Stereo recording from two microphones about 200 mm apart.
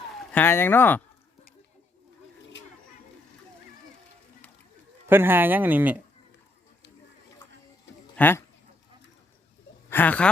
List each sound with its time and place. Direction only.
0.3 s speech: 10° left (ahead or behind)
5.0 s speech: 10° right (ahead or behind)
8.1 s speech: 10° left (ahead or behind)
9.9 s speech: 10° left (ahead or behind)